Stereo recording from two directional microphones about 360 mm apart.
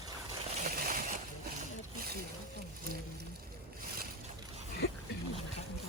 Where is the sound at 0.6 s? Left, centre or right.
Right.